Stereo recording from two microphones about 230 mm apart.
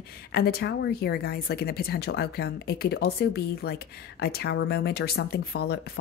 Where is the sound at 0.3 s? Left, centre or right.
Left.